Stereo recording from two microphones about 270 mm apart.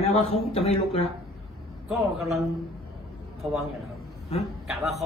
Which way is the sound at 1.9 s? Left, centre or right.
Centre.